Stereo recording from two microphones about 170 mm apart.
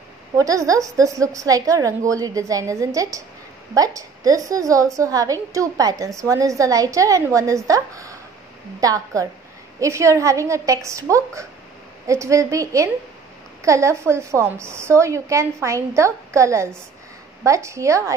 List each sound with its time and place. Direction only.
0.4 s a woman's voice: 20° right (ahead or behind)